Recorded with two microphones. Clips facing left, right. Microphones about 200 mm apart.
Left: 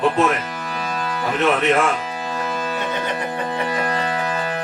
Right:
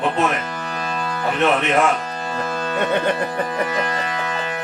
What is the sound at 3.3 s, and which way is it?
Music, 30° left (ahead or behind).